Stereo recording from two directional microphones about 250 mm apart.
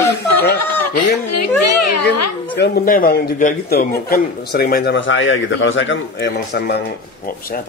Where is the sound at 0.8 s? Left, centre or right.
Left.